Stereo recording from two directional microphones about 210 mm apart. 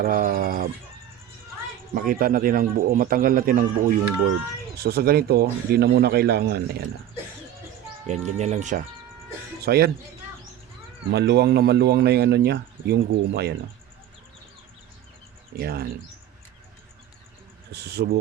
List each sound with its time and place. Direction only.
0.0 s speech: 40° right (ahead or behind)
2.0 s a man's voice: 40° right (ahead or behind)
8.0 s speech: 35° right (ahead or behind)
9.6 s a man's voice: 50° right (ahead or behind)
11.1 s a man's voice: 50° right (ahead or behind)
15.5 s a man's voice: 45° right (ahead or behind)
17.7 s a man's voice: 50° right (ahead or behind)